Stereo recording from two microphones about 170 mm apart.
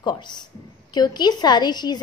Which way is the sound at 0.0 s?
25° left (ahead or behind).